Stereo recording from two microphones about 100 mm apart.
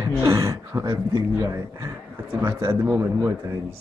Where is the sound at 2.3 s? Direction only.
30° right (ahead or behind).